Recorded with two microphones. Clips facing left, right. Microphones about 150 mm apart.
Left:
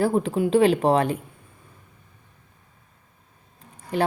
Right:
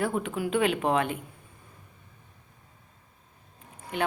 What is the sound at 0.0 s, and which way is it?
A woman's voice, 35° left (ahead or behind).